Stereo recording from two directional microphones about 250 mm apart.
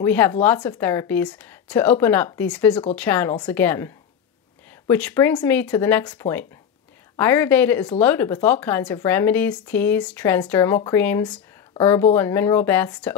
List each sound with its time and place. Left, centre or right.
0.0 s a woman's voice: centre
2.7 s a woman's voice: centre